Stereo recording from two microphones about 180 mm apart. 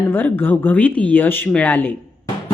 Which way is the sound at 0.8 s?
10° left (ahead or behind).